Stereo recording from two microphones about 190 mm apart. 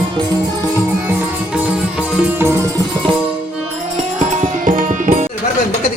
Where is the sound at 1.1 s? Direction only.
5° right (ahead or behind).